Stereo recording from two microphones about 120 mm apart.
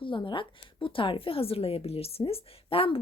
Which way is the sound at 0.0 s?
45° left (ahead or behind).